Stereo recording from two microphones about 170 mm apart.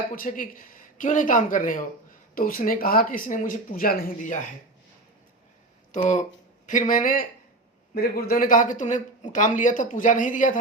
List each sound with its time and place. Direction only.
0.2 s speech: 55° left (ahead or behind)
5.9 s speech: 50° left (ahead or behind)